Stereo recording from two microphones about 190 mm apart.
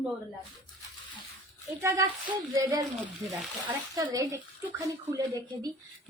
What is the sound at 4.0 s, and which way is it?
Speech, 20° right (ahead or behind).